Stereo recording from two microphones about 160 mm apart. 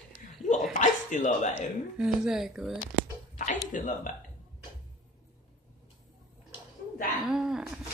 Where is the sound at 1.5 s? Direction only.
5° right (ahead or behind).